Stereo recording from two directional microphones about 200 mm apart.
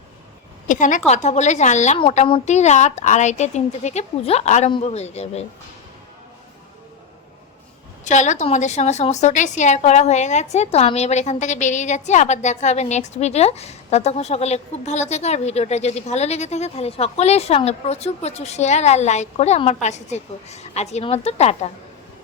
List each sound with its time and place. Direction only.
0.7 s a woman's voice: 40° left (ahead or behind)
8.0 s a woman's voice: 35° left (ahead or behind)